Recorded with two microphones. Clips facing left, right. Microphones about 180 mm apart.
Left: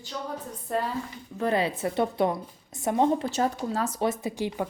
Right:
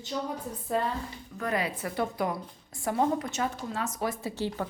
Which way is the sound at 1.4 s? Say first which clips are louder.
Left 5 dB; 30° left (ahead or behind).